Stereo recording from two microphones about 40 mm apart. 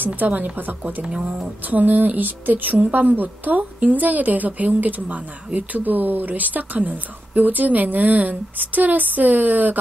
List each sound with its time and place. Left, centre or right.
0.0 s speech: right
1.0 s speech: centre
1.7 s speech: right